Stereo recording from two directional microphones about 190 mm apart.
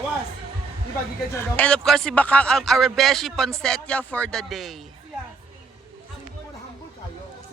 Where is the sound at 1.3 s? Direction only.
10° left (ahead or behind).